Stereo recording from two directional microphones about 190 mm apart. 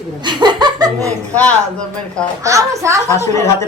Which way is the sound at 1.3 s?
5° left (ahead or behind).